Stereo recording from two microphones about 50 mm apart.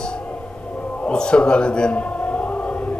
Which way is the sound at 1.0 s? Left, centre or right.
Centre.